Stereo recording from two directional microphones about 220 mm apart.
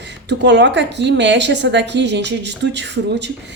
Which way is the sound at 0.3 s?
50° right (ahead or behind).